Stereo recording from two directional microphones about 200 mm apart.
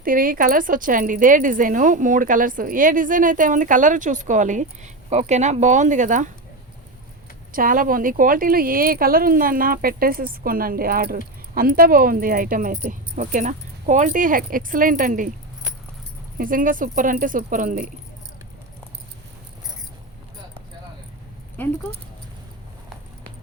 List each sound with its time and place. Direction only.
0.0 s speech: 45° right (ahead or behind)
7.5 s speech: 45° right (ahead or behind)
16.4 s speech: 45° right (ahead or behind)
21.6 s speech: 10° left (ahead or behind)